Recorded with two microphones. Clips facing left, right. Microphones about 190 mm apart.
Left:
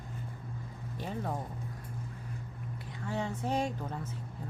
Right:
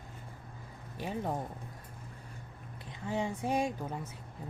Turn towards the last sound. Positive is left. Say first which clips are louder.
# right 1 dB
turn(degrees=-10)  # may be behind; listen again after turning